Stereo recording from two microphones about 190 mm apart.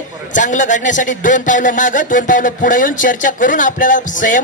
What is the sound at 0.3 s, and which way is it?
A man's voice, 40° left (ahead or behind).